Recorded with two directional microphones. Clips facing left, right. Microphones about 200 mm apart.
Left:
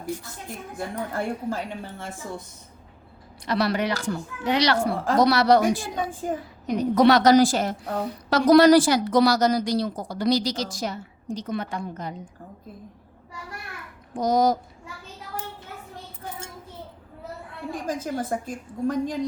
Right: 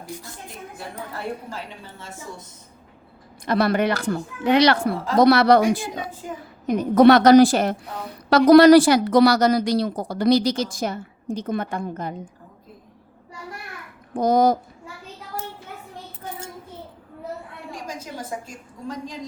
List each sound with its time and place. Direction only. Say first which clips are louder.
0.8 s a woman's voice: left 5 dB; 50° left (ahead or behind)
3.4 s a woman's voice: right 4 dB; 50° right (ahead or behind)
6.3 s a woman's voice: left 5 dB; 45° left (ahead or behind)
6.7 s a woman's voice: right 4 dB; 50° right (ahead or behind)
14.1 s a woman's voice: right 3 dB; 55° right (ahead or behind)
18.0 s a woman's voice: left 5 dB; 55° left (ahead or behind)